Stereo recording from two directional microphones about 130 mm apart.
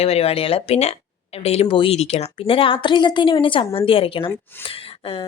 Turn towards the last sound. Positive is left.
turn(degrees=45)  # may be behind; listen again after turning